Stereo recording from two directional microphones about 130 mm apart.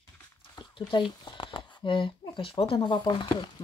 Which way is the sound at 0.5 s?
40° left (ahead or behind).